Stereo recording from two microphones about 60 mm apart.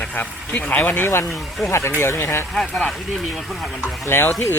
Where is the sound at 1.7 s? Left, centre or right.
Left.